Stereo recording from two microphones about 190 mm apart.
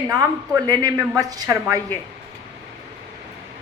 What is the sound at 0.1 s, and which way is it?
Speech, 15° right (ahead or behind).